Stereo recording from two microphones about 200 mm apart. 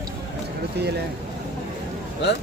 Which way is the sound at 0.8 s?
55° right (ahead or behind).